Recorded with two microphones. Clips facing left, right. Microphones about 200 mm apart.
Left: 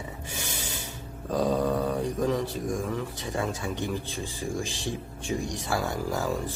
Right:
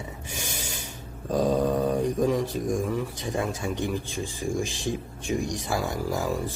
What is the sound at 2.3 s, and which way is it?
Speech, 15° right (ahead or behind).